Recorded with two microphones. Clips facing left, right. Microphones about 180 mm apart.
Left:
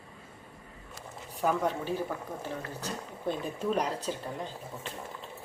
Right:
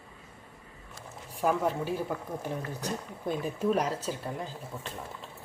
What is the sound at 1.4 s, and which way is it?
Speech, 5° right (ahead or behind).